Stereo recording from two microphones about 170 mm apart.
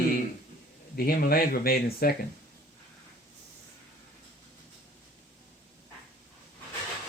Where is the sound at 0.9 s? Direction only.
60° left (ahead or behind).